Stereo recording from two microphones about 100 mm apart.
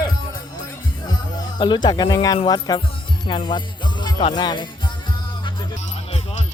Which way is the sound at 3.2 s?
55° left (ahead or behind).